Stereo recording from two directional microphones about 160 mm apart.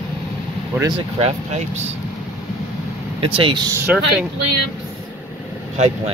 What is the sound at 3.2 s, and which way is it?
Speech, 35° right (ahead or behind).